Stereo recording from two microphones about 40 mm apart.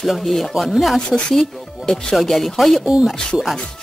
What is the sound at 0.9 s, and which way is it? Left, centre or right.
Speech, left.